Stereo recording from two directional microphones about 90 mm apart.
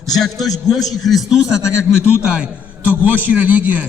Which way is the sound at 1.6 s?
35° left (ahead or behind).